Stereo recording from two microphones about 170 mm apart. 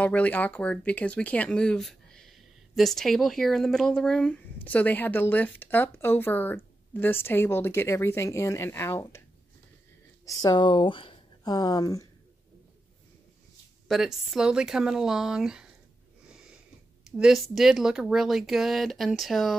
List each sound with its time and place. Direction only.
0.0 s speech: 10° left (ahead or behind)
10.2 s speech: 25° left (ahead or behind)
13.8 s speech: centre (ahead or behind)
17.0 s speech: centre (ahead or behind)